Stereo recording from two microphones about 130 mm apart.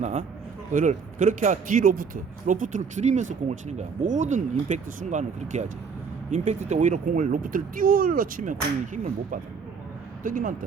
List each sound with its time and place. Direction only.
0.0 s speech: 60° right (ahead or behind)
0.7 s speech: 75° right (ahead or behind); by 2.0 s 90° right
2.5 s speech: 75° right (ahead or behind)